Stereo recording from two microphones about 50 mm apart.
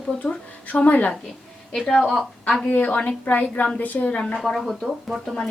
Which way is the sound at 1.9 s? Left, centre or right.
Centre.